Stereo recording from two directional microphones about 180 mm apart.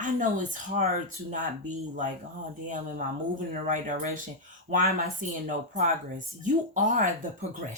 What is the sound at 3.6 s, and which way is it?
Speech, 45° right (ahead or behind).